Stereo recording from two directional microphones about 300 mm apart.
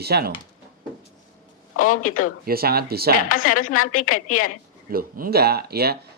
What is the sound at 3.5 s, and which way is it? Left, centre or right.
Speech, left.